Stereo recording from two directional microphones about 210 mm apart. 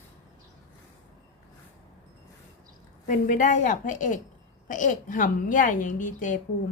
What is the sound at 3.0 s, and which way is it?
A woman's voice, 35° left (ahead or behind).